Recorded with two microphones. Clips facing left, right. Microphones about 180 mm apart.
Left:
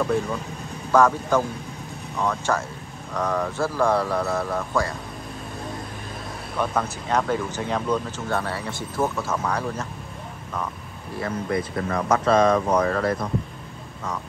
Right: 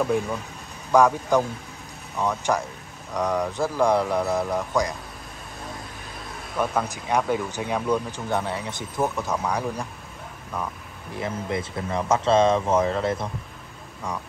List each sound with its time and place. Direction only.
0.9 s speech: 15° right (ahead or behind)
6.6 s speech: 10° right (ahead or behind)
11.1 s speech: 20° right (ahead or behind)